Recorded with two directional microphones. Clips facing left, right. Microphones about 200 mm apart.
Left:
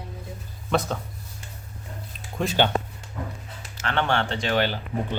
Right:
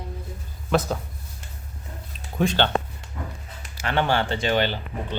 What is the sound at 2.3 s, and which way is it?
Speech, 5° left (ahead or behind).